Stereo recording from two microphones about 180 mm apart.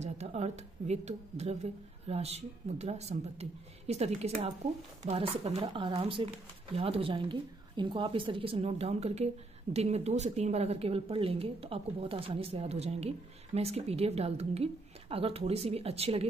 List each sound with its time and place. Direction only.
0.0 s speech: 40° right (ahead or behind)